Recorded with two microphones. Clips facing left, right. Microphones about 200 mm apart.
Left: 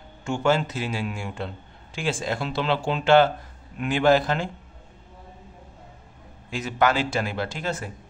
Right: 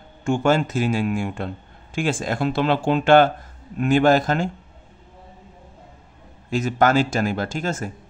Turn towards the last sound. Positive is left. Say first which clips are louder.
# right 3 dB
turn(degrees=-45)  # may be behind; listen again after turning